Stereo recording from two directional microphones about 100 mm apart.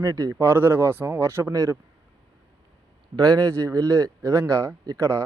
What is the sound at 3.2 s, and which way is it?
Speech, 30° right (ahead or behind).